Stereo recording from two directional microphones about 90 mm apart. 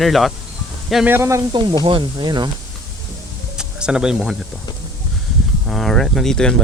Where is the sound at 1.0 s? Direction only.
25° right (ahead or behind).